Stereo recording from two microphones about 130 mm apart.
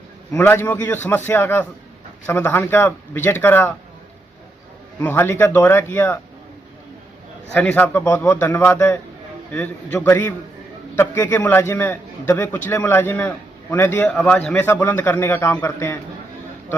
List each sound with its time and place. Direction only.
0.3 s a man's voice: 15° left (ahead or behind)
4.9 s a man's voice: 15° left (ahead or behind)
7.5 s a man's voice: 10° left (ahead or behind)